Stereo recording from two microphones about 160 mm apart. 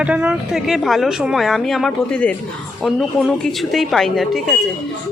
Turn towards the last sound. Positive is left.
turn(degrees=0)  # may be behind; listen again after turning